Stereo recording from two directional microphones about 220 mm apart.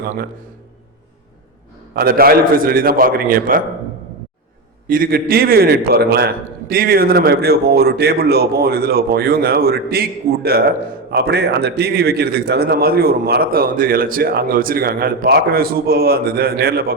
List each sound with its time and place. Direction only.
0.0 s a man's voice: 45° right (ahead or behind)
2.0 s a man's voice: 45° right (ahead or behind)
4.9 s a man's voice: 40° right (ahead or behind)